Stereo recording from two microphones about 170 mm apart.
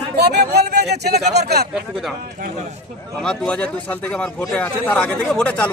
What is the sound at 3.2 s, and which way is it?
A man's voice, 5° left (ahead or behind).